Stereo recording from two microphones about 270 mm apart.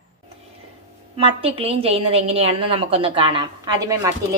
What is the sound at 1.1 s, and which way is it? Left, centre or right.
A woman's voice, right.